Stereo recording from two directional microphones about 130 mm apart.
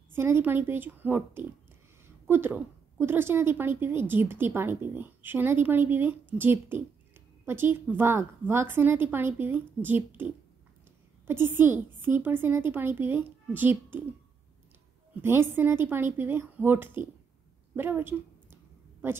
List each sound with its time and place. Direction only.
0.1 s a woman's voice: 20° right (ahead or behind)
15.2 s a woman's voice: 15° right (ahead or behind)
17.7 s a sound: 15° right (ahead or behind)